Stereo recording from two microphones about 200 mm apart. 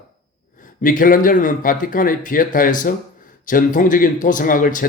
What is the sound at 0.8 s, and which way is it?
Speech, 45° left (ahead or behind).